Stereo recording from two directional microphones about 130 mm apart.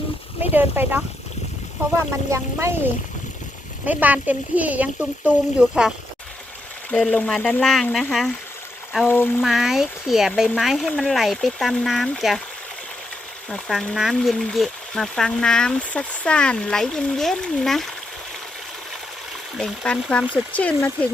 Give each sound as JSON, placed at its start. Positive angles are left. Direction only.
{"t": 0.5, "sound": "speech", "side_deg": -15}
{"t": 2.3, "sound": "speech", "side_deg": -20}
{"t": 3.8, "sound": "speech", "side_deg": -10}
{"t": 6.9, "sound": "speech", "side_deg": 5}
{"t": 9.0, "sound": "speech", "side_deg": 15}
{"t": 9.4, "sound": "speech", "side_deg": -5}
{"t": 13.5, "sound": "speech", "side_deg": 0}
{"t": 19.5, "sound": "speech", "side_deg": 5}